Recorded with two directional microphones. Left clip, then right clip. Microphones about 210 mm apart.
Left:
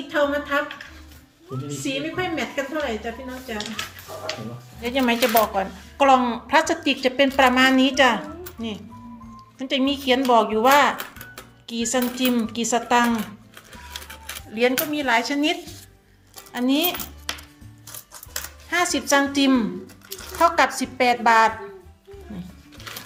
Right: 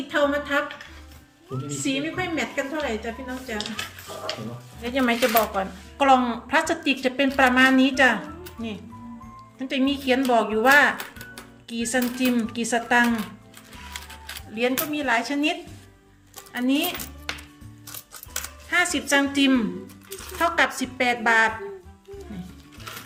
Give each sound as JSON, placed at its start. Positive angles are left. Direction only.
{"t": 0.1, "sound": "a woman's voice", "side_deg": -20}
{"t": 1.5, "sound": "a woman's voice", "side_deg": -5}
{"t": 1.9, "sound": "a woman's voice", "side_deg": -20}
{"t": 4.8, "sound": "speech", "side_deg": 0}
{"t": 14.5, "sound": "a woman's voice", "side_deg": 5}
{"t": 18.7, "sound": "a woman's voice", "side_deg": 5}